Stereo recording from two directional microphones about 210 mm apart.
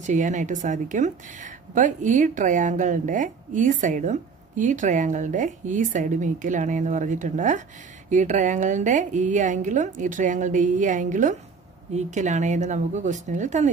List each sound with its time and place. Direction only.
0.0 s a woman's voice: 35° right (ahead or behind)